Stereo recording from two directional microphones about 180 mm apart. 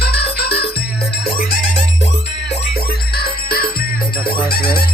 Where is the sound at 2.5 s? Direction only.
65° left (ahead or behind).